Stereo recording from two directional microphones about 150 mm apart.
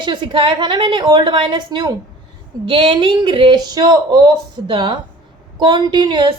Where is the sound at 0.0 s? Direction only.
30° right (ahead or behind).